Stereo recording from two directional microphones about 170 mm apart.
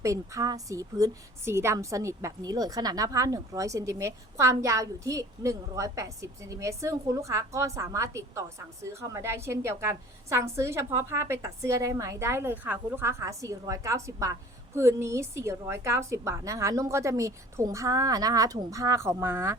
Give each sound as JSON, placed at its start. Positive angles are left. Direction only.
{"t": 0.0, "sound": "a woman's voice", "side_deg": -20}